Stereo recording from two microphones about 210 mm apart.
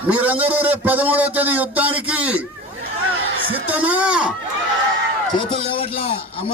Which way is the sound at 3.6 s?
5° right (ahead or behind).